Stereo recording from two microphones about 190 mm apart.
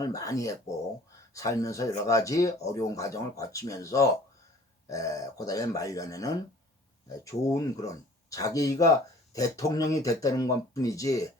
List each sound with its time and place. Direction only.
0.0 s speech: 15° left (ahead or behind)